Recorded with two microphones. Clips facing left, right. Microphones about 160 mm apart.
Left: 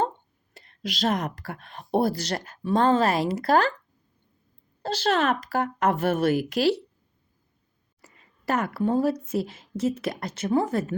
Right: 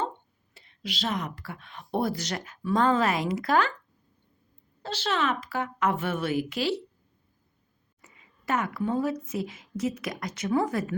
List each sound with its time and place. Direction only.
0.5 s speech: 45° left (ahead or behind)
4.8 s speech: 40° left (ahead or behind)
8.0 s a sound: 35° left (ahead or behind)
9.3 s a woman's voice: 30° left (ahead or behind)